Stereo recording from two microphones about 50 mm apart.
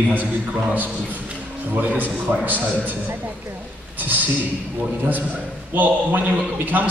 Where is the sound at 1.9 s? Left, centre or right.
Right.